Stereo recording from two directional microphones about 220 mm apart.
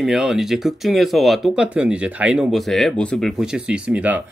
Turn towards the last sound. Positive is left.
turn(degrees=-5)  # may be behind; listen again after turning